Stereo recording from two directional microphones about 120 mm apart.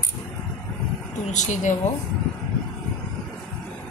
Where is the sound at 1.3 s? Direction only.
90° left.